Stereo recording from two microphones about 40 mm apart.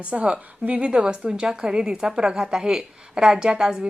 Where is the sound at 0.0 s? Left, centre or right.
Right.